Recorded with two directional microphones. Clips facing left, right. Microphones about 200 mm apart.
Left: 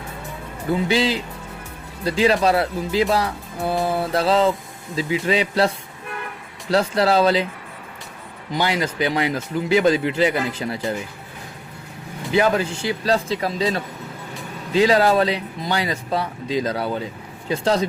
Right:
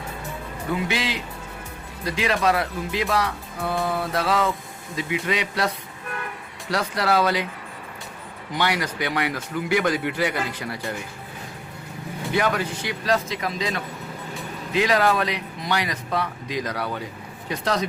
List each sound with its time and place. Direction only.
0.7 s speech: 30° left (ahead or behind)
8.6 s speech: 25° left (ahead or behind)
12.3 s speech: 25° left (ahead or behind)